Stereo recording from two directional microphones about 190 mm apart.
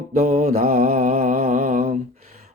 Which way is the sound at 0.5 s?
40° right (ahead or behind).